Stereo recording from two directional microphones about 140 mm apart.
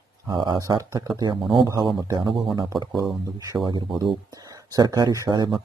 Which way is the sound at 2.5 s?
35° right (ahead or behind).